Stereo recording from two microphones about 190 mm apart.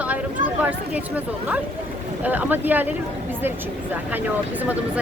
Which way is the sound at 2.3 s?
10° right (ahead or behind).